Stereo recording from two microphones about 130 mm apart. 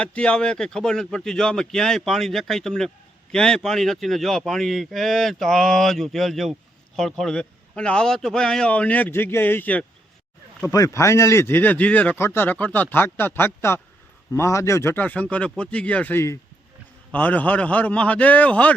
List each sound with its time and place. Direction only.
0.0 s speech: 10° left (ahead or behind)
10.7 s a man's voice: 25° left (ahead or behind)